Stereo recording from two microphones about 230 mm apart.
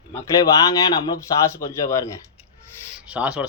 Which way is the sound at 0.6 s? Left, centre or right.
Centre.